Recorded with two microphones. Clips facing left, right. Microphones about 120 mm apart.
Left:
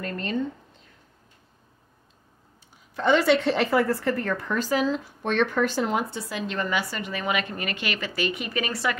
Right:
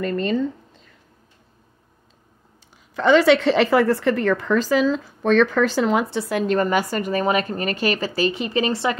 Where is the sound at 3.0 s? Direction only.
90° right; by 6.4 s 70° right (ahead or behind).